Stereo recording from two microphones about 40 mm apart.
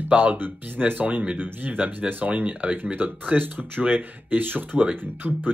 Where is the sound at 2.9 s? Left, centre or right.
Right.